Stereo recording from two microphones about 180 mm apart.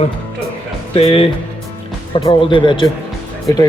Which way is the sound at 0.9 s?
30° left (ahead or behind).